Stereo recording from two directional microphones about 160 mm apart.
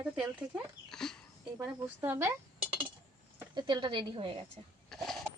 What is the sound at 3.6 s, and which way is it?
Speech, 30° right (ahead or behind).